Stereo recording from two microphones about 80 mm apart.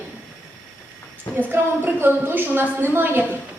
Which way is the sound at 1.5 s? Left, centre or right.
Right.